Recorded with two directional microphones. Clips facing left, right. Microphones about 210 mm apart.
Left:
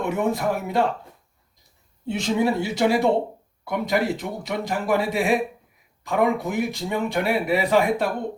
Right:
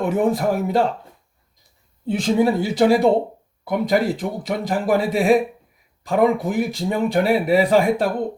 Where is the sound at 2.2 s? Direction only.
35° right (ahead or behind).